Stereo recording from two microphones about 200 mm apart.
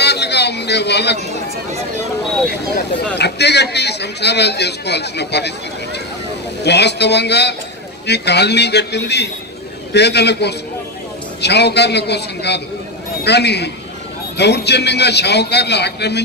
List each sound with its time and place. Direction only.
0.0 s a sound: 55° left (ahead or behind)
3.2 s a man's voice: 55° left (ahead or behind)
6.6 s a man's voice: 55° left (ahead or behind)